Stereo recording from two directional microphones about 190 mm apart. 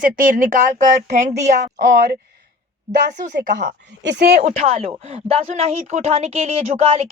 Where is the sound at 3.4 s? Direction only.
40° right (ahead or behind).